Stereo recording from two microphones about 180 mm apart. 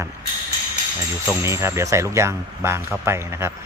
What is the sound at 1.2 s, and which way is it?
Speech, 15° right (ahead or behind).